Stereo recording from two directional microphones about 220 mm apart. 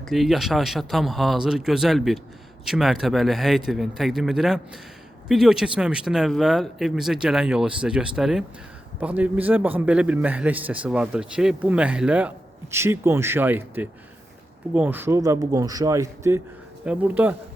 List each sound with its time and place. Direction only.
0.0 s a man's voice: centre (ahead or behind)